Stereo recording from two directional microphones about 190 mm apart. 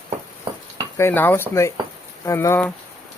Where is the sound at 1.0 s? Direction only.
10° left (ahead or behind).